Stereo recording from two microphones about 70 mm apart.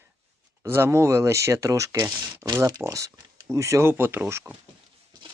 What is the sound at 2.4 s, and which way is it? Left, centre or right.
Speech, centre.